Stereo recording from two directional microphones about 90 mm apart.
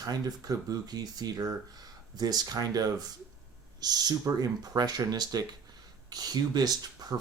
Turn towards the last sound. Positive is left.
turn(degrees=-45)  # may be behind; listen again after turning